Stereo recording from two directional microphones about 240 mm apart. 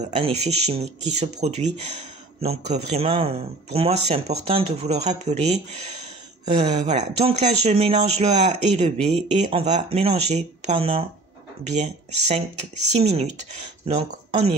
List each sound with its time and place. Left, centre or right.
0.0 s speech: right